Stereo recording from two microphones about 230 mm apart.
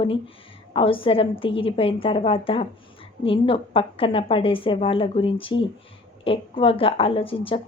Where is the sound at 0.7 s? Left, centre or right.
Left.